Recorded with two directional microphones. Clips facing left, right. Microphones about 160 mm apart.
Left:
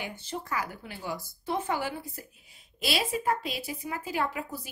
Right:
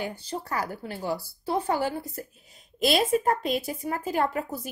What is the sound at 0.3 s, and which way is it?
A woman's voice, 40° right (ahead or behind).